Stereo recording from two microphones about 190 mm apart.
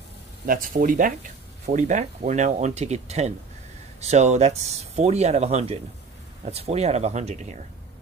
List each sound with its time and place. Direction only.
0.5 s speech: 45° right (ahead or behind)